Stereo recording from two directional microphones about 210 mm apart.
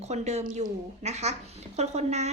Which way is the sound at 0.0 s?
30° right (ahead or behind).